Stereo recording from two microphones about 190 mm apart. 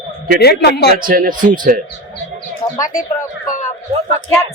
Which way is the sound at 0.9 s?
50° right (ahead or behind).